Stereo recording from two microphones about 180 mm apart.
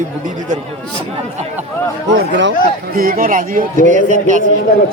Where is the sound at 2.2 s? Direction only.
85° right.